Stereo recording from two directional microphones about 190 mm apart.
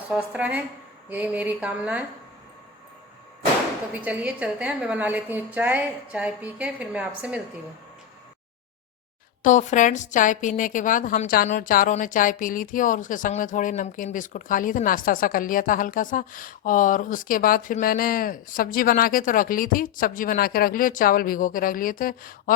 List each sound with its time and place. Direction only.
0.1 s a woman's voice: 5° right (ahead or behind)
3.9 s a woman's voice: 10° right (ahead or behind)
9.4 s a woman's voice: 40° left (ahead or behind)